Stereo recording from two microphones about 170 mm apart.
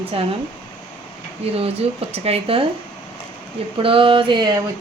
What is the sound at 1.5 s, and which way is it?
Speech, 35° right (ahead or behind).